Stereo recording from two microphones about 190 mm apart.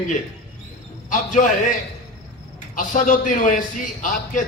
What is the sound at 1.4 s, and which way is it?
Speech, 40° left (ahead or behind).